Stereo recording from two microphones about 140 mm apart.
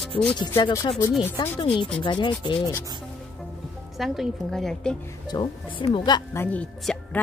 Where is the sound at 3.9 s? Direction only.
Centre (ahead or behind).